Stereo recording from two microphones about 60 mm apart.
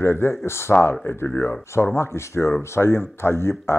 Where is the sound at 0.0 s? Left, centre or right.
Left.